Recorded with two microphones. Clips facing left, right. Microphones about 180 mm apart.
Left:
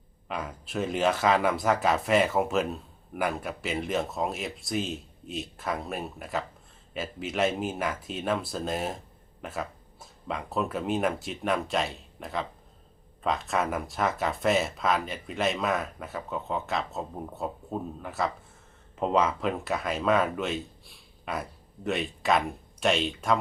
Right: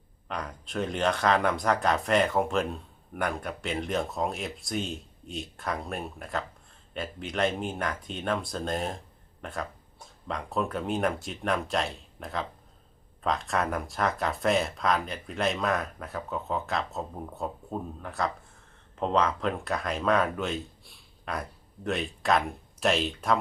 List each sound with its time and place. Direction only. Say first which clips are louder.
0.3 s speech: left 1 dB; 5° left (ahead or behind)